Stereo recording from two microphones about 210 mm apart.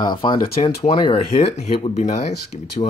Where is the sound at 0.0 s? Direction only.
20° left (ahead or behind).